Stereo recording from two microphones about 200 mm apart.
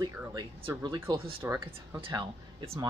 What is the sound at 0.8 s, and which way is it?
Speech, 20° right (ahead or behind).